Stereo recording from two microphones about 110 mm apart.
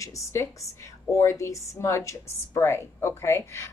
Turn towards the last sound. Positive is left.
turn(degrees=25)  # may be behind; listen again after turning